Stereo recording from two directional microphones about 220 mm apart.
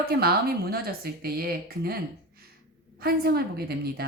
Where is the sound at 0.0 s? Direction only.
45° right (ahead or behind).